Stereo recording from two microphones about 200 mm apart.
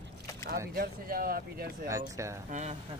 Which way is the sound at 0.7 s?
45° right (ahead or behind).